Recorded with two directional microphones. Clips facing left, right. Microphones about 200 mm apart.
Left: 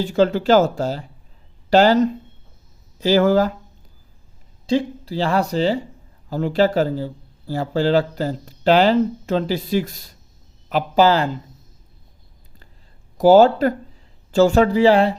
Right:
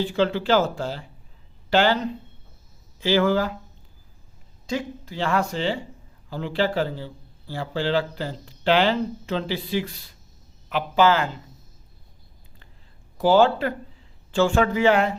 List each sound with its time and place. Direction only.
0.0 s speech: 45° left (ahead or behind)
4.6 s speech: 30° left (ahead or behind)
13.1 s speech: 40° left (ahead or behind)